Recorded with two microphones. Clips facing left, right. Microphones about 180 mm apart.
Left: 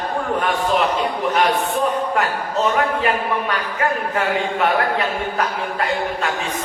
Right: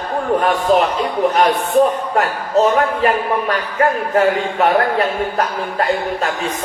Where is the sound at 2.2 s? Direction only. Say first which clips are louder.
Right 5 dB; 35° right (ahead or behind).